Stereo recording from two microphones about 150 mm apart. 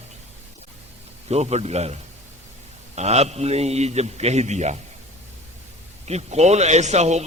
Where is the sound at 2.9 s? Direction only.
45° right (ahead or behind).